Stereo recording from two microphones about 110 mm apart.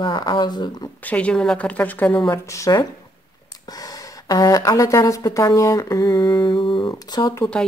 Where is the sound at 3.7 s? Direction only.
35° left (ahead or behind).